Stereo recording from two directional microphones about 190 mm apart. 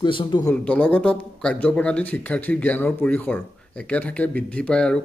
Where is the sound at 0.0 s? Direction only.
25° left (ahead or behind).